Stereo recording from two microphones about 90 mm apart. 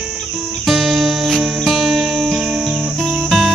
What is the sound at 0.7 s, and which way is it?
Music, centre (ahead or behind).